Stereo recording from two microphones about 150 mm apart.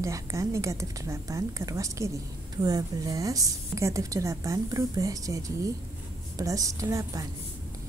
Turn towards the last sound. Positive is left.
turn(degrees=-20)  # may be behind; listen again after turning